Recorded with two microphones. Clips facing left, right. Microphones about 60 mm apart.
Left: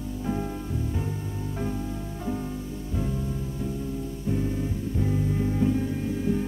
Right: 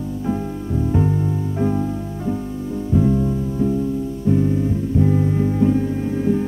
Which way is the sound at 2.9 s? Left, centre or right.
Right.